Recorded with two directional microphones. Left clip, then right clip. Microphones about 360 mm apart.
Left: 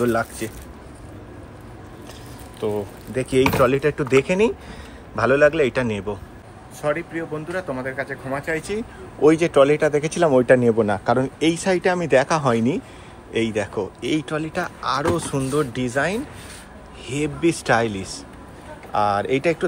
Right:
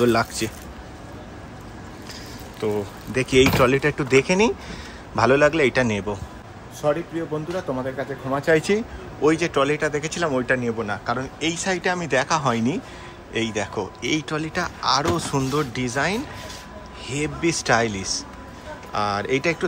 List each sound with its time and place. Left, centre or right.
0.0 s speech: centre
2.6 s speech: centre
7.5 s speech: centre
8.7 s speech: centre
9.2 s speech: centre